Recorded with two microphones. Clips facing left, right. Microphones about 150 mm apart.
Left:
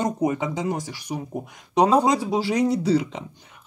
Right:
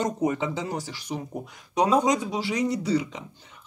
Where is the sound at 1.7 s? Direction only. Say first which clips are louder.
Left 3 dB; 35° left (ahead or behind).